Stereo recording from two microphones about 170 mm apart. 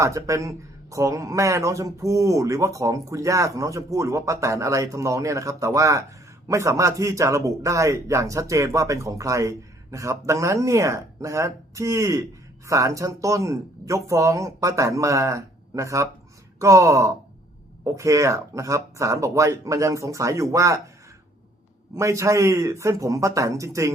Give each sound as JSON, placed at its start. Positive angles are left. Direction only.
{"t": 0.3, "sound": "speech", "side_deg": -20}
{"t": 21.9, "sound": "speech", "side_deg": -15}